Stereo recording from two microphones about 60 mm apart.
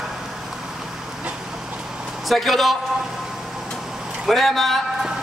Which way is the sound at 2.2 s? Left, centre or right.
Centre.